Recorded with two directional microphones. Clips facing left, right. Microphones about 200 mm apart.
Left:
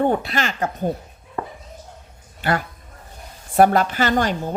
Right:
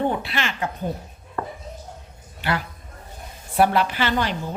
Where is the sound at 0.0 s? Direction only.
45° left (ahead or behind).